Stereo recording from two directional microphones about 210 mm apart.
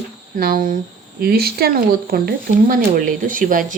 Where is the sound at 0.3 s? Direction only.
40° right (ahead or behind).